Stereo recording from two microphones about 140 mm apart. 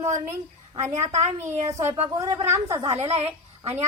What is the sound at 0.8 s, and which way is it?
Speech, 50° right (ahead or behind).